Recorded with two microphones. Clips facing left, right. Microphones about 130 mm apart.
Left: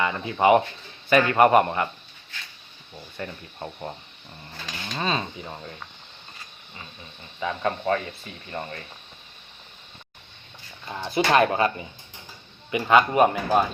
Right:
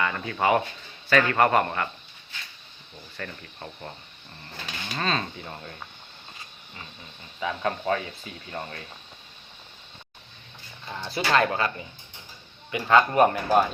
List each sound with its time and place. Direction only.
0.0 s a man's voice: 20° left (ahead or behind)
3.2 s speech: 20° left (ahead or behind)
4.9 s a man's voice: 10° left (ahead or behind)
7.3 s speech: centre (ahead or behind)
10.9 s a man's voice: 20° left (ahead or behind); by 13.7 s 5° left (ahead or behind)